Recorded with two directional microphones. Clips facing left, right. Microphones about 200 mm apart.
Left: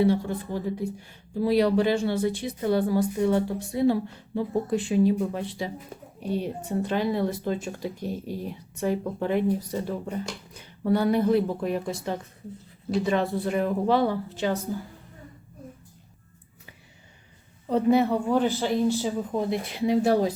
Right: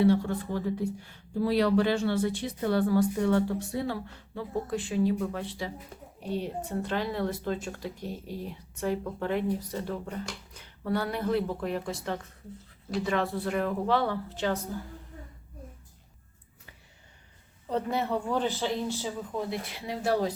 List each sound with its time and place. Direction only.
0.0 s speech: 15° left (ahead or behind)
17.7 s speech: 10° left (ahead or behind)